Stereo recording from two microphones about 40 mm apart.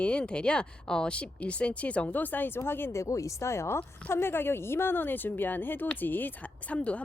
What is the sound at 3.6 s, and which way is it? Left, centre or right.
Speech, left.